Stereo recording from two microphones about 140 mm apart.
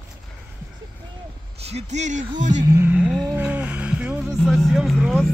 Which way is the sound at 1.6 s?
50° right (ahead or behind).